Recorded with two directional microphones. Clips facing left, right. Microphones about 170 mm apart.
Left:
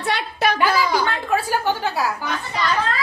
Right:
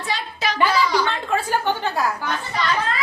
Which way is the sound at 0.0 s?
65° left (ahead or behind).